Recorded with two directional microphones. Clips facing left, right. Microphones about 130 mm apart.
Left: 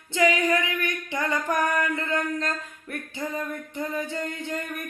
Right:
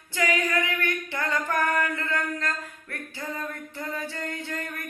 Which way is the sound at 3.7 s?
20° left (ahead or behind).